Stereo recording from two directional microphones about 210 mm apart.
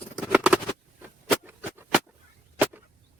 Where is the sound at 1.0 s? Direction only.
10° right (ahead or behind).